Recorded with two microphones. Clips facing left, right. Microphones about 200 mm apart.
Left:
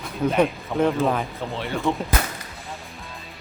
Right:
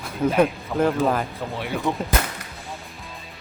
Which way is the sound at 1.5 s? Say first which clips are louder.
Left 1 dB; 10° right (ahead or behind).